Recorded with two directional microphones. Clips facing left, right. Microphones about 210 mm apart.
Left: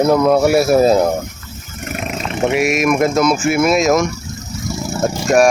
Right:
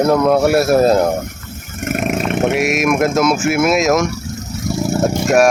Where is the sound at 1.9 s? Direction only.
55° right (ahead or behind).